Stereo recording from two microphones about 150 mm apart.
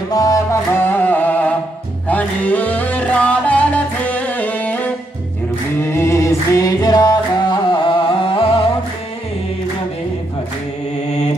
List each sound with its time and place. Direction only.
0.1 s music: 25° left (ahead or behind)